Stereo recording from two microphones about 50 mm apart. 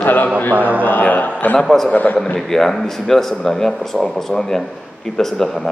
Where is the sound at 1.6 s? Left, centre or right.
Centre.